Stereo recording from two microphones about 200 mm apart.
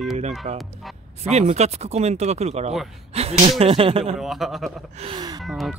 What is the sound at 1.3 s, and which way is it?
Speech, 35° right (ahead or behind).